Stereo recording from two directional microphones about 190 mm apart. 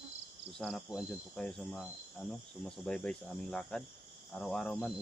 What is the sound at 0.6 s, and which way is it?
Speech, centre (ahead or behind).